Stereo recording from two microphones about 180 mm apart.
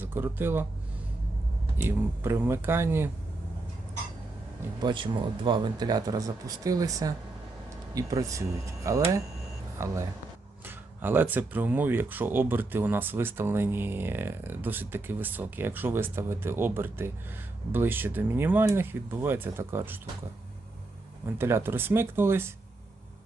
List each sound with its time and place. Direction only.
0.0 s speech: 10° right (ahead or behind)
1.8 s speech: 10° right (ahead or behind)
4.8 s speech: 25° right (ahead or behind)
21.2 s speech: 15° right (ahead or behind)